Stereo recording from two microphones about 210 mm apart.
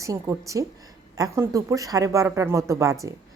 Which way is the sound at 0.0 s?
15° right (ahead or behind).